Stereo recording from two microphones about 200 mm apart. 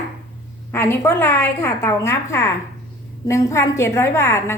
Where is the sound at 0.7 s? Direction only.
10° left (ahead or behind).